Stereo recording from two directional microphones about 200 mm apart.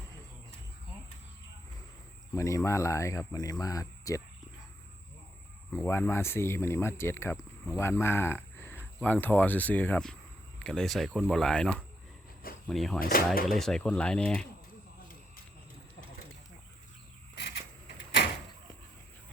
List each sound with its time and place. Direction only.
2.3 s speech: 15° left (ahead or behind)
5.7 s speech: 10° left (ahead or behind)
13.0 s speech: 45° left (ahead or behind)
13.5 s speech: centre (ahead or behind)
17.3 s vehicle: 60° left (ahead or behind)